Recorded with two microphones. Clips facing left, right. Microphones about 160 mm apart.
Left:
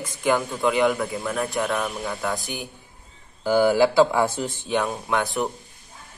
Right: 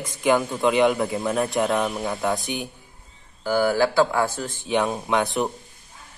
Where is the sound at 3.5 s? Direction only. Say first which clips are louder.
Left 2 dB; 15° left (ahead or behind).